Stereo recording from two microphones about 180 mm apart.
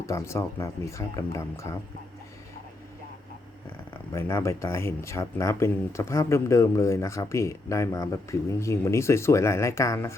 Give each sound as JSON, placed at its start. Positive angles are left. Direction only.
{"t": 0.0, "sound": "speech", "side_deg": 15}
{"t": 4.1, "sound": "speech", "side_deg": 15}